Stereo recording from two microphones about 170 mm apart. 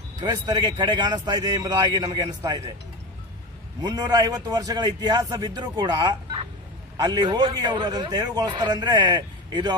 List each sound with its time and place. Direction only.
0.2 s a man's voice: 25° right (ahead or behind)
3.8 s a man's voice: 20° right (ahead or behind)